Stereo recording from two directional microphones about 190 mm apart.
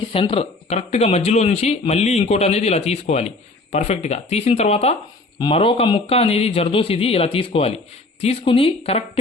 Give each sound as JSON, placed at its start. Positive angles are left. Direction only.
{"t": 0.1, "sound": "speech", "side_deg": 30}